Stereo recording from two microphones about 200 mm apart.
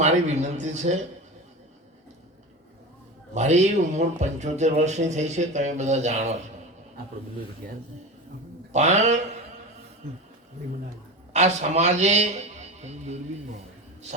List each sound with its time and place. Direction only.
0.0 s speech: 35° right (ahead or behind)
3.3 s speech: 35° right (ahead or behind)
8.7 s speech: 35° right (ahead or behind)
11.3 s a man's voice: 35° right (ahead or behind)